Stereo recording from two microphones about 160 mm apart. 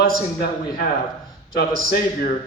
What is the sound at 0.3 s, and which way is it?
Speech, 70° left (ahead or behind).